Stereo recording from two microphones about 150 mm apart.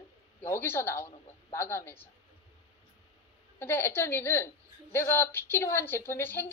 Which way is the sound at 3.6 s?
15° left (ahead or behind).